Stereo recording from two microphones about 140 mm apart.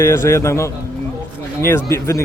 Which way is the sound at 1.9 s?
20° left (ahead or behind).